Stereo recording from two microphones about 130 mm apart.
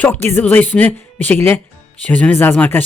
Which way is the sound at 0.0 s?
15° left (ahead or behind).